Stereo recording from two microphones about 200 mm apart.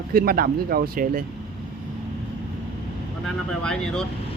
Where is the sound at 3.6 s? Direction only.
5° left (ahead or behind).